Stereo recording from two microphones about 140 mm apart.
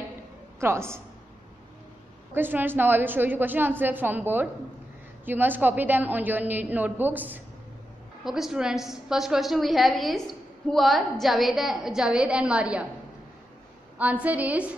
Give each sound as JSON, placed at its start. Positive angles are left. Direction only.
{"t": 0.6, "sound": "a woman's voice", "side_deg": -20}
{"t": 2.3, "sound": "a woman's voice", "side_deg": -15}
{"t": 13.9, "sound": "a woman's voice", "side_deg": -10}